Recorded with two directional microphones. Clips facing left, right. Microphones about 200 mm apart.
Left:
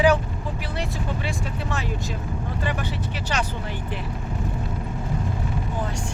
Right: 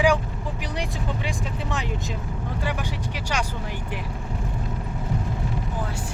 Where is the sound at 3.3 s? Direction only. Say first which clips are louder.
Left 1 dB; 10° right (ahead or behind).